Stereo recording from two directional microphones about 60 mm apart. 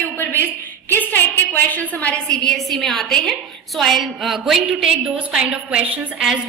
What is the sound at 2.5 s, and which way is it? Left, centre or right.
A woman's voice, centre.